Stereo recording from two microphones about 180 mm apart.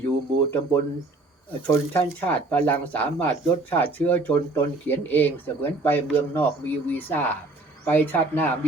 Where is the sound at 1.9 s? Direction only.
10° left (ahead or behind).